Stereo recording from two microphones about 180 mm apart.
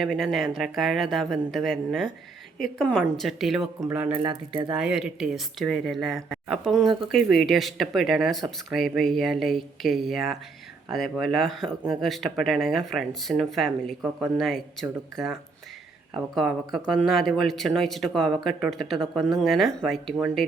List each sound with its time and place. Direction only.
0.0 s speech: centre (ahead or behind)
3.8 s speech: 15° right (ahead or behind)
4.2 s speech: 25° right (ahead or behind)
4.7 s speech: 5° right (ahead or behind)